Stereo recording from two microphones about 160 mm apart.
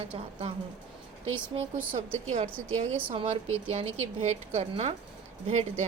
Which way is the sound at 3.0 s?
35° right (ahead or behind).